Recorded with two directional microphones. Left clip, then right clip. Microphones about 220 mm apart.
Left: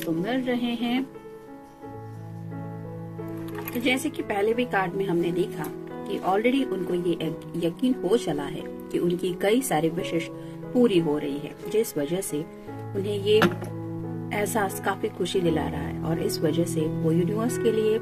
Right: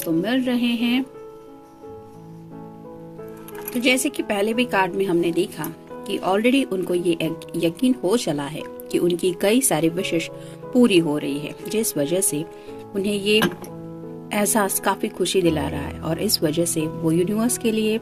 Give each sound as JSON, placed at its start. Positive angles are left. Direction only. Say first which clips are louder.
{"t": 0.3, "sound": "speech", "louder": "right 5 dB", "side_deg": -50}
{"t": 3.8, "sound": "speech", "louder": "right 6 dB", "side_deg": -50}